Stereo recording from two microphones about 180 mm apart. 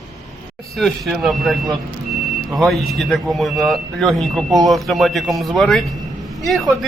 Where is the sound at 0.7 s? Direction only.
Centre (ahead or behind).